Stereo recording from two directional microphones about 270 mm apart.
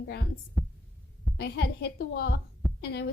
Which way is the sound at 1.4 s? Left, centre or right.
Left.